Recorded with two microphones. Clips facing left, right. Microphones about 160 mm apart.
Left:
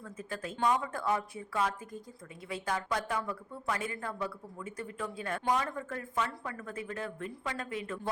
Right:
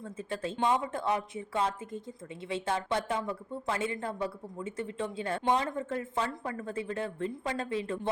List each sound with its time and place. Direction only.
0.0 s speech: 30° right (ahead or behind)